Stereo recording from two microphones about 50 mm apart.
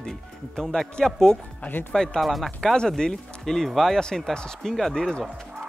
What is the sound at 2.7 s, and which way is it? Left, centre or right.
Speech, centre.